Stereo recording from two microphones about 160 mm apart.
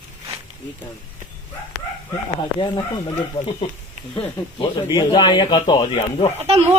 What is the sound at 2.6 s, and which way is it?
Speech, 30° left (ahead or behind).